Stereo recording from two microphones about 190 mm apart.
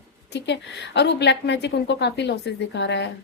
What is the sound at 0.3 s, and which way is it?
A woman's voice, 65° left (ahead or behind).